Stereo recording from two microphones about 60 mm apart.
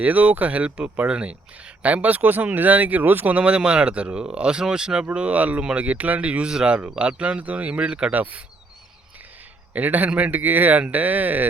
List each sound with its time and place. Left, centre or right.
0.0 s speech: right
9.7 s speech: right